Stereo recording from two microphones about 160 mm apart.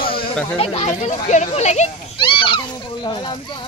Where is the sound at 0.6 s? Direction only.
40° left (ahead or behind).